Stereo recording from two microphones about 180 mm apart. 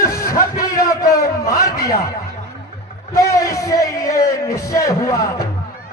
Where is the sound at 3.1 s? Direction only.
15° left (ahead or behind).